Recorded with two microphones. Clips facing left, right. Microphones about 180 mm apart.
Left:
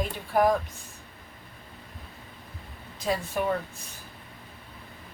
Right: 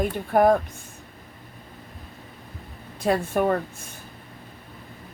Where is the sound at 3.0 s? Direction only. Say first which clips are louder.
Right 6 dB; 55° right (ahead or behind).